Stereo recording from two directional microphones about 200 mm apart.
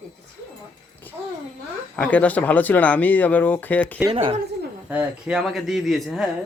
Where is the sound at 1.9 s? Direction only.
5° left (ahead or behind).